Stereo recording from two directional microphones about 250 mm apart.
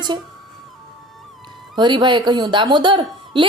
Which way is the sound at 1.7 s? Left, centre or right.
Centre.